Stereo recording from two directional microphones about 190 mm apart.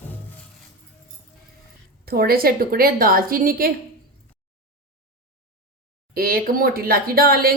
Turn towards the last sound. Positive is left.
turn(degrees=-55)  # may be behind; listen again after turning